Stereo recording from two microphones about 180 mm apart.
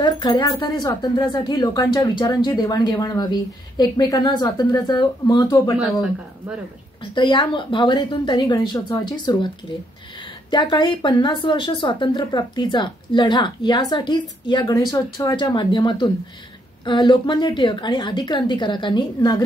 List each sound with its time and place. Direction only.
0.0 s speech: 25° left (ahead or behind)
7.2 s speech: 25° left (ahead or behind)
10.5 s speech: 25° left (ahead or behind)